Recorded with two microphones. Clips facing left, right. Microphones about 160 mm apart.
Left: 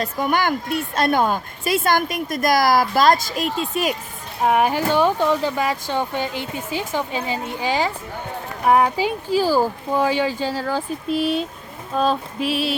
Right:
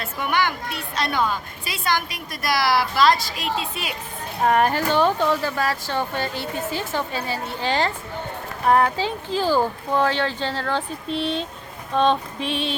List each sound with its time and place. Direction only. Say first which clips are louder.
0.0 s a woman's voice: left 3 dB; 40° left (ahead or behind)
4.4 s speech: left 1 dB; 10° left (ahead or behind)
11.9 s music: right 1 dB; 5° left (ahead or behind)